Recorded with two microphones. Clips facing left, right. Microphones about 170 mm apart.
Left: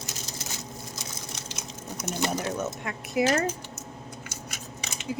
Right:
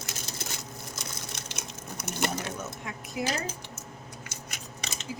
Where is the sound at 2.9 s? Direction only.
70° left (ahead or behind).